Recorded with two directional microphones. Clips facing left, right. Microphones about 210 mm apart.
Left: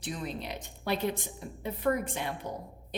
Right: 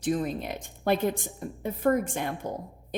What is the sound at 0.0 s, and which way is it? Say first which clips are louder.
A woman's voice: right 9 dB; 45° right (ahead or behind).